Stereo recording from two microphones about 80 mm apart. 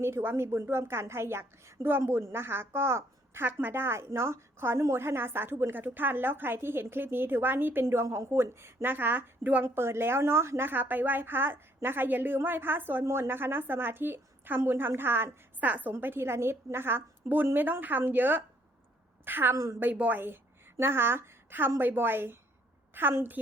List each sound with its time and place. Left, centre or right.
0.0 s a woman's voice: right
8.0 s speech: right
8.3 s a woman's voice: right
9.6 s a woman's voice: right